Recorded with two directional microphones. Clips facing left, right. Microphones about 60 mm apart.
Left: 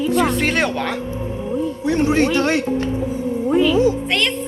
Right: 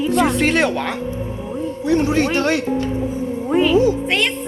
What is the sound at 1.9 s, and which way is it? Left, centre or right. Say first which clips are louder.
Speech: even; left.